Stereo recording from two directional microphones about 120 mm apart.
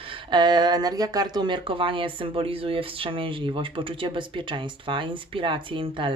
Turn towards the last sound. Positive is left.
turn(degrees=-45)  # may be behind; listen again after turning